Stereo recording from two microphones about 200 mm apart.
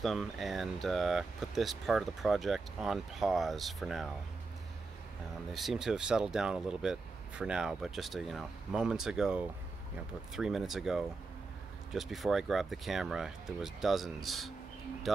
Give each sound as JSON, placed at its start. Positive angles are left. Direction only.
{"t": 0.0, "sound": "speech", "side_deg": 0}
{"t": 5.5, "sound": "speech", "side_deg": 0}